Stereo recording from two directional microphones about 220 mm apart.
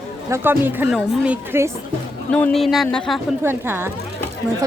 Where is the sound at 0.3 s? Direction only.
10° right (ahead or behind).